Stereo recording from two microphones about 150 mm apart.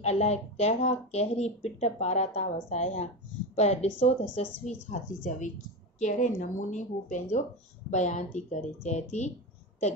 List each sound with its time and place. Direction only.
0.0 s speech: 45° left (ahead or behind)